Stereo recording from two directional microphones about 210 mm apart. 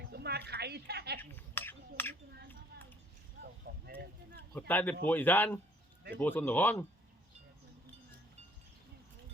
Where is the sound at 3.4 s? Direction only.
50° right (ahead or behind).